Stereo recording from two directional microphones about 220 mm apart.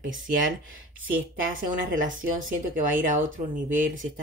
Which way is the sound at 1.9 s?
35° right (ahead or behind).